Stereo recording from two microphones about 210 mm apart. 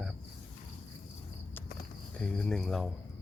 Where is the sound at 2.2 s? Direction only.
5° left (ahead or behind).